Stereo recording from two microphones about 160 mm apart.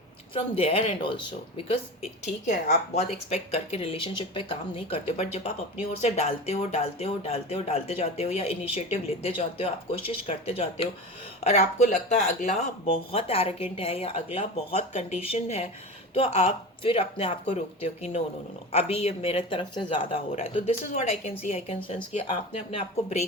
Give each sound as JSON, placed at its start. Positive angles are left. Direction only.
{"t": 0.3, "sound": "speech", "side_deg": 35}
{"t": 2.5, "sound": "speech", "side_deg": 45}